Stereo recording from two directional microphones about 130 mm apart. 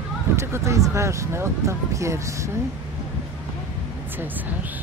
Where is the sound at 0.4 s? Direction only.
20° right (ahead or behind).